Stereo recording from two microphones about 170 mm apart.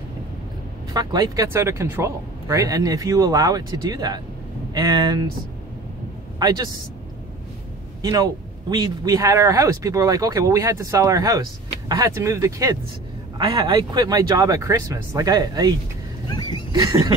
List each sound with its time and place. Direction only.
0.9 s speech: 20° right (ahead or behind)
6.4 s speech: 25° right (ahead or behind)
8.0 s speech: 20° right (ahead or behind)
16.3 s dog: 25° left (ahead or behind)
16.7 s speech: 20° right (ahead or behind)